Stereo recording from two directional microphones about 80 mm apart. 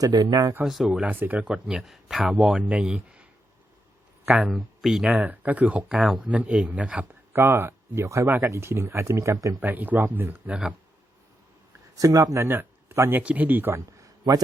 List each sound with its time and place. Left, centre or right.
0.0 s speech: right
0.6 s speech: centre
1.0 s speech: right; by 2.6 s centre
2.6 s speech: centre
4.4 s speech: centre
5.2 s speech: right
7.3 s speech: right
9.6 s speech: right
10.5 s speech: centre
11.9 s speech: right
12.5 s a sound: right
13.1 s speech: centre
13.7 s a sound: right